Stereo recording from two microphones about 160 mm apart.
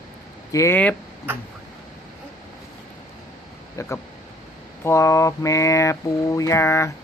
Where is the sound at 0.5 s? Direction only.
15° left (ahead or behind).